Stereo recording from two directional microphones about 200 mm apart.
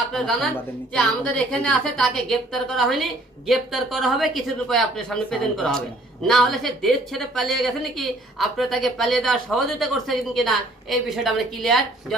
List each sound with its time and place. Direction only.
0.1 s speech: centre (ahead or behind)